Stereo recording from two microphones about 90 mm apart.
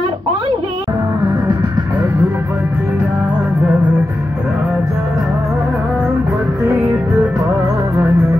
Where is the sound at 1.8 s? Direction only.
20° right (ahead or behind).